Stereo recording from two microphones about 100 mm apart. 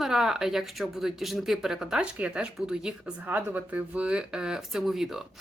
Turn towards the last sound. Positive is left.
turn(degrees=-5)  # may be behind; listen again after turning